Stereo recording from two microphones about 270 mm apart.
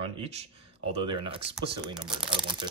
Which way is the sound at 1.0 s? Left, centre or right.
Centre.